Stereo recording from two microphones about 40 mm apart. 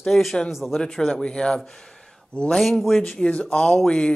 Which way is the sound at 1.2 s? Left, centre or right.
Left.